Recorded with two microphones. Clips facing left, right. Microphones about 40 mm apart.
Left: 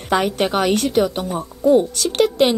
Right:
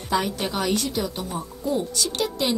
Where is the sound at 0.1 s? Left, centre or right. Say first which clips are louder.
Left 7 dB; left.